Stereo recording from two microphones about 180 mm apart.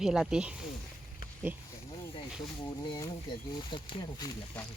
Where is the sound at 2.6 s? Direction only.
25° left (ahead or behind).